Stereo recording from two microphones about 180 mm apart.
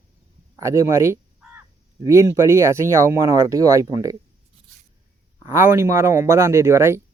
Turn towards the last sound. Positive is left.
turn(degrees=-15)  # may be behind; listen again after turning